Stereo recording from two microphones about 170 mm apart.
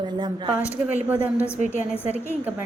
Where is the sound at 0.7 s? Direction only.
10° right (ahead or behind).